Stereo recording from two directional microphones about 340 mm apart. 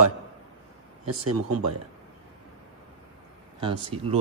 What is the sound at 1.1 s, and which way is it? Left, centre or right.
Speech, right.